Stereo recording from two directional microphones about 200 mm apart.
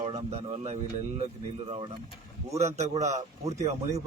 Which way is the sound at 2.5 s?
35° right (ahead or behind).